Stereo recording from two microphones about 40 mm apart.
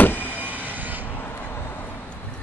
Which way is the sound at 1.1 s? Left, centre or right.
Left.